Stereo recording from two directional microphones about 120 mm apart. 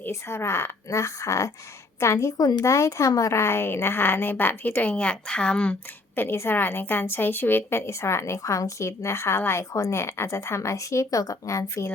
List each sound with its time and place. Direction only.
0.0 s a woman's voice: 20° left (ahead or behind)
6.1 s a woman's voice: 20° left (ahead or behind)